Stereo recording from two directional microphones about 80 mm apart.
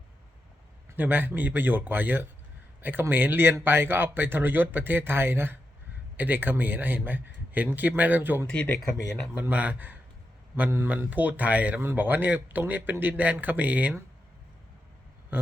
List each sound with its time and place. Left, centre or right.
0.9 s speech: right
8.4 s speech: centre
9.3 s speech: centre
15.3 s a sound: right